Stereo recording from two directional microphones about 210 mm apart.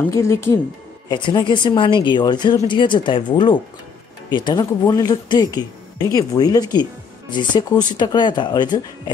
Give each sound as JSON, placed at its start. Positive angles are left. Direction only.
{"t": 0.1, "sound": "speech", "side_deg": 15}